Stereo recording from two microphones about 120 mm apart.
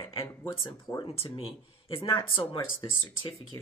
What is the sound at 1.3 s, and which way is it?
Speech, 50° left (ahead or behind).